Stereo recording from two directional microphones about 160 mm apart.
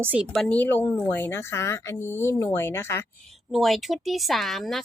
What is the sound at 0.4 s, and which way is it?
Speech, 10° left (ahead or behind).